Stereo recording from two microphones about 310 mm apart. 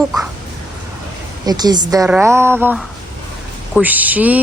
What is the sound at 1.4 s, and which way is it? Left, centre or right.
A woman's voice, centre.